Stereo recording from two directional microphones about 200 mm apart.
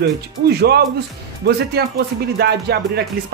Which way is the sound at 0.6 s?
55° right (ahead or behind).